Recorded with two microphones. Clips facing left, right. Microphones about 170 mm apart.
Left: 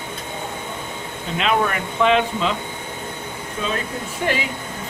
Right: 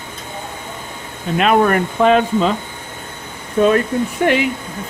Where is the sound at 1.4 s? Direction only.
50° right (ahead or behind).